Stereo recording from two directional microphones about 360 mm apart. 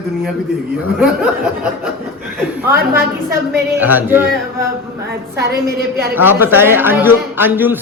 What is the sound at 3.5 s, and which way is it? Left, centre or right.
Speech, centre.